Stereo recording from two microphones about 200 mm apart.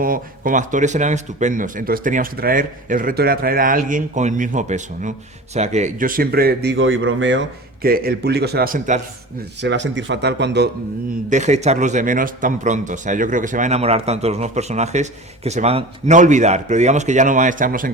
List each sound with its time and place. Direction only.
0.0 s speech: 45° right (ahead or behind); by 7.4 s 70° right (ahead or behind)
7.8 s speech: 50° right (ahead or behind)
9.6 s speech: 60° right (ahead or behind)
11.3 s speech: 35° right (ahead or behind)